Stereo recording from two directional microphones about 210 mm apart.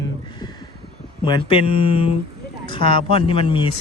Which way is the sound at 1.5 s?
25° left (ahead or behind).